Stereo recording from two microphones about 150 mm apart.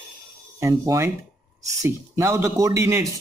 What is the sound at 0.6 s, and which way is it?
Speech, 20° right (ahead or behind).